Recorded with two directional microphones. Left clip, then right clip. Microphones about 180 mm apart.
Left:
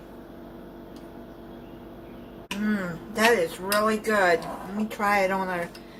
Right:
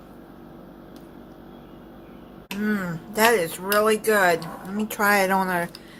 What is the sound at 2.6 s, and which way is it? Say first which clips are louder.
A woman's voice: right 3 dB; 55° right (ahead or behind).